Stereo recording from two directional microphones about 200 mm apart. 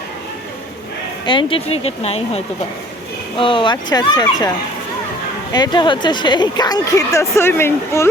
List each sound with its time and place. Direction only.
1.3 s a woman's voice: 25° left (ahead or behind)
5.5 s a woman's voice: 20° left (ahead or behind)